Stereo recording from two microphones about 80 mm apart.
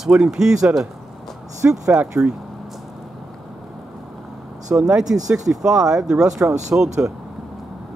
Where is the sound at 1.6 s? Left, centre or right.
Right.